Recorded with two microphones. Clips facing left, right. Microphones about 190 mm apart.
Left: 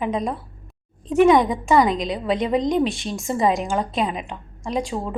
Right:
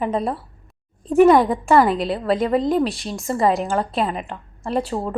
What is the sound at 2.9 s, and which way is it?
Speech, centre (ahead or behind).